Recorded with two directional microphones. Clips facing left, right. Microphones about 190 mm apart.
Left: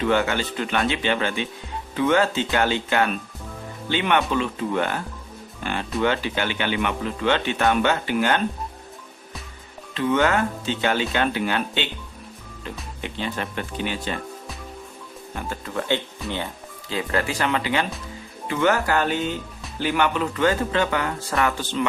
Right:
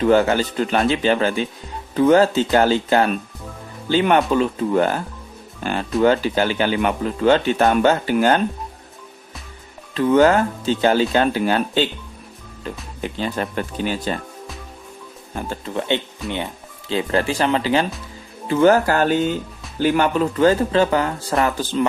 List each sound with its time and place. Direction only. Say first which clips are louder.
0.0 s speech: right 6 dB; 35° right (ahead or behind)
6.0 s speech: right 7 dB; 40° right (ahead or behind)
9.9 s speech: right 6 dB; 40° right (ahead or behind)
13.0 s speech: right 5 dB; 40° right (ahead or behind)
15.4 s speech: right 4 dB; 30° right (ahead or behind)
16.2 s speech: right 3 dB; centre (ahead or behind)
16.9 s speech: right 5 dB; 30° right (ahead or behind)